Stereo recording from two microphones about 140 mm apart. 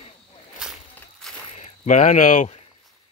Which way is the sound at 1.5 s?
55° left (ahead or behind).